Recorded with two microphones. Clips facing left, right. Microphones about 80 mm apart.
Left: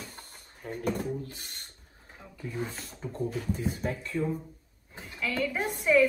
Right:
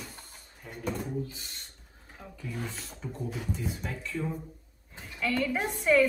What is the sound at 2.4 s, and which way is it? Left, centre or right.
Speech, left.